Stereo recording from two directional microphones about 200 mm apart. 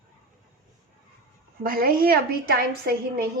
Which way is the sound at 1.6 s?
50° right (ahead or behind).